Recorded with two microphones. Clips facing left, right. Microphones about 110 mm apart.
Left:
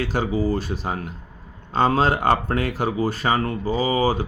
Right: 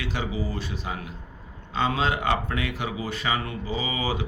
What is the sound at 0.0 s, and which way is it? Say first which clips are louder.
Speech: left 8 dB; 40° left (ahead or behind).